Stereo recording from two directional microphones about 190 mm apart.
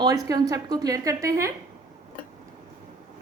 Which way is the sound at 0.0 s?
20° right (ahead or behind).